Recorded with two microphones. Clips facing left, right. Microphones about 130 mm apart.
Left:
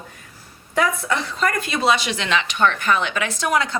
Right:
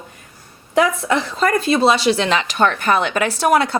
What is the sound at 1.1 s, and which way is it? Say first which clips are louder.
Speech: right 5 dB; 30° right (ahead or behind).